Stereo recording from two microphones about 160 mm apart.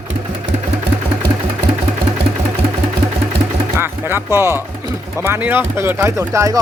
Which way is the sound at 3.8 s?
15° right (ahead or behind).